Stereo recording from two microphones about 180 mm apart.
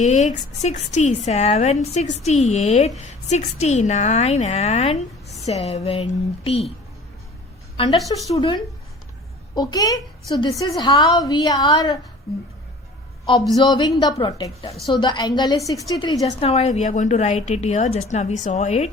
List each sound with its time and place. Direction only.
0.0 s a woman's voice: 40° left (ahead or behind)
7.8 s a woman's voice: 20° left (ahead or behind)
13.6 s a woman's voice: 25° left (ahead or behind)
16.2 s a woman's voice: 30° left (ahead or behind)